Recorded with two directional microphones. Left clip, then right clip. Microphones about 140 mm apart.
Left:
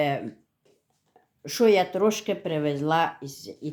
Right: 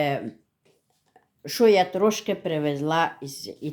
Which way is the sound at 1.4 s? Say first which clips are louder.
Right 2 dB; 10° right (ahead or behind).